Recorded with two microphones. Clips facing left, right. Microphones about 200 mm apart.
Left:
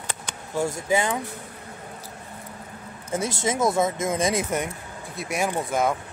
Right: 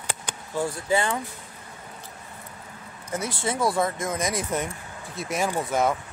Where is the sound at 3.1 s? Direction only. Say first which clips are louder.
Left 3 dB; 25° left (ahead or behind).